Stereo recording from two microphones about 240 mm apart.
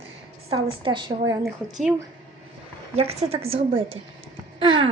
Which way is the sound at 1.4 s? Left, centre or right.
Centre.